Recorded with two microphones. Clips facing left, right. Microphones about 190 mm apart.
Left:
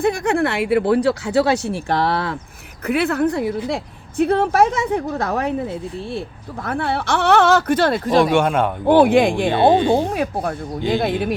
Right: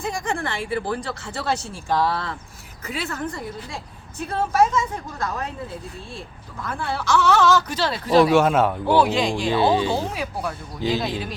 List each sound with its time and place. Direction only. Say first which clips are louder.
0.0 s speech: left 9 dB; 65° left (ahead or behind)
2.8 s speech: left 11 dB; 60° left (ahead or behind)
8.1 s speech: right 2 dB; centre (ahead or behind)
8.9 s speech: left 10 dB; 55° left (ahead or behind)